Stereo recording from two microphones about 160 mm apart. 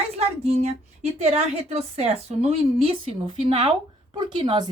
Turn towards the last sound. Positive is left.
turn(degrees=-30)  # may be behind; listen again after turning